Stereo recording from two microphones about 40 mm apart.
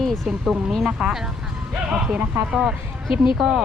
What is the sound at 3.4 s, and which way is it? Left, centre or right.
Speech, centre.